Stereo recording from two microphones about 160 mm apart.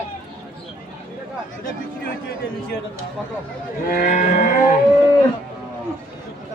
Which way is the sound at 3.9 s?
55° left (ahead or behind).